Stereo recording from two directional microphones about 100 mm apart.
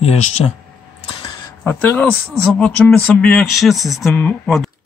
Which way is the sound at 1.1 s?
65° left (ahead or behind).